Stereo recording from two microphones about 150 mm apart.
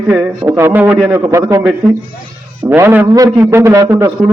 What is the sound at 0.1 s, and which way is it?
Speech, 15° right (ahead or behind).